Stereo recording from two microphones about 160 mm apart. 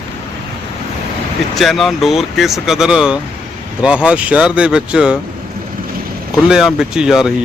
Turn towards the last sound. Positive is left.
turn(degrees=-5)  # may be behind; listen again after turning